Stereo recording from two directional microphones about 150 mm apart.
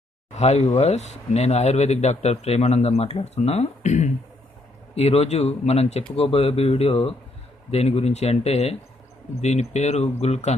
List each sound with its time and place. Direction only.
0.3 s speech: 45° left (ahead or behind)